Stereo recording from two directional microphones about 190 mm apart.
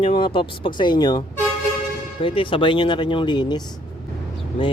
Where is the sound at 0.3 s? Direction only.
25° left (ahead or behind).